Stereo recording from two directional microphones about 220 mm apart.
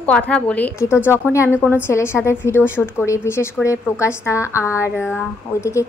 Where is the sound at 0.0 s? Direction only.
5° left (ahead or behind).